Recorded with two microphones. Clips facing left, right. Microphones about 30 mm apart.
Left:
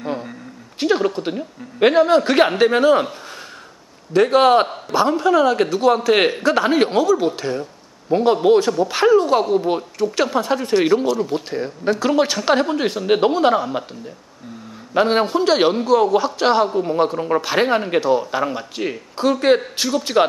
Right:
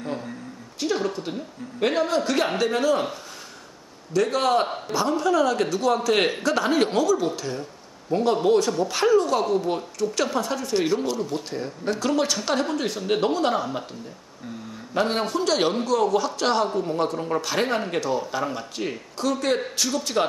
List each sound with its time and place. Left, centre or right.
0.0 s a sound: left
0.7 s a man's voice: left
4.1 s a man's voice: left
15.0 s a man's voice: left